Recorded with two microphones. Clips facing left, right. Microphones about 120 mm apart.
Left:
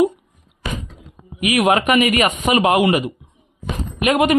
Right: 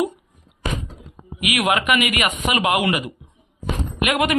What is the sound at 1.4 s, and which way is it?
Speech, 35° left (ahead or behind).